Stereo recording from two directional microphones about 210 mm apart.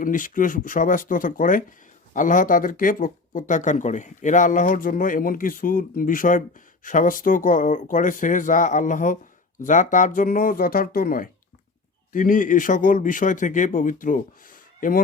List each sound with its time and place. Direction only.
0.0 s speech: 40° left (ahead or behind)